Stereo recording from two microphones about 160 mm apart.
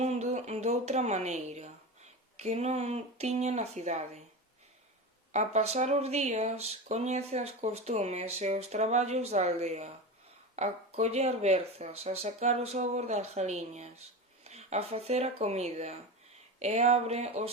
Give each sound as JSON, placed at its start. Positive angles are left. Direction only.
{"t": 0.0, "sound": "a sound", "side_deg": -45}
{"t": 2.4, "sound": "speech", "side_deg": -45}
{"t": 5.3, "sound": "speech", "side_deg": -45}